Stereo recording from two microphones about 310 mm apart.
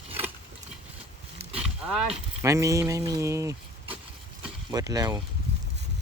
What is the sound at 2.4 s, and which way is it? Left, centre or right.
Speech, centre.